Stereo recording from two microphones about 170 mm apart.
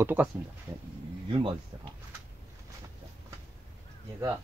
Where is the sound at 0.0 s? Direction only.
10° right (ahead or behind).